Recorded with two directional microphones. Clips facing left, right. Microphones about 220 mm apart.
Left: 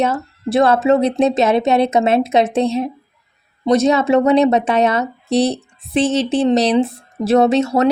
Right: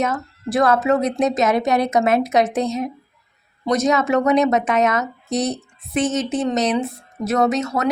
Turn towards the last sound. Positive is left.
turn(degrees=30)  # may be behind; listen again after turning